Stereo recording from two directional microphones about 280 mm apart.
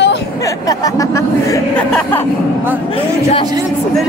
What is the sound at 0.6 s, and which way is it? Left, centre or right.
Speech, centre.